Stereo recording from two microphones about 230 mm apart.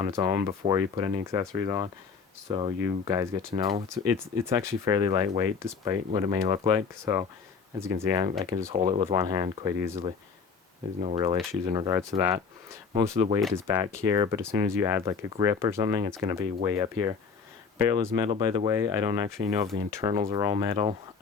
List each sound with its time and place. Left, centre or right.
0.0 s speech: centre
11.0 s speech: right
12.9 s speech: right